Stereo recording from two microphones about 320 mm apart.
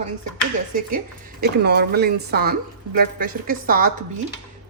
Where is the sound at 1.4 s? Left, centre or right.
Right.